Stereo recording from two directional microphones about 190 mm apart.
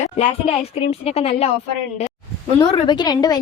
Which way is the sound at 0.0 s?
35° left (ahead or behind).